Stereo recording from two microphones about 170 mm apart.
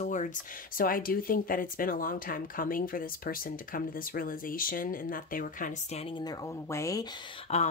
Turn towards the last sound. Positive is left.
turn(degrees=40)  # may be behind; listen again after turning